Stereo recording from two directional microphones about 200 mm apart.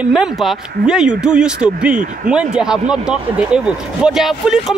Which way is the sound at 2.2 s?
5° right (ahead or behind).